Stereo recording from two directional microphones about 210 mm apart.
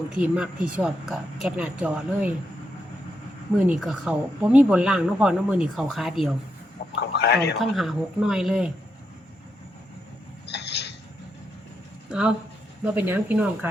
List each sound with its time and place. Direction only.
0.2 s speech: 5° right (ahead or behind)
3.7 s speech: centre (ahead or behind)
7.1 s speech: 55° left (ahead or behind)
7.6 s speech: centre (ahead or behind)
10.4 s a sound: 55° left (ahead or behind)
12.0 s speech: 5° right (ahead or behind)